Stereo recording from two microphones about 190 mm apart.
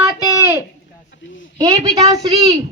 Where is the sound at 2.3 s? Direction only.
30° right (ahead or behind).